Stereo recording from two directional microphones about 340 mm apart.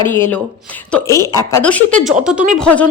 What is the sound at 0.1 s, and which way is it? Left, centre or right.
A woman's voice, centre.